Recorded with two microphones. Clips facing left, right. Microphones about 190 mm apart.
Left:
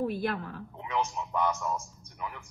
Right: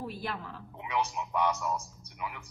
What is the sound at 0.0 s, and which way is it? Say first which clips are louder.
Speech: left 7 dB; 55° left (ahead or behind).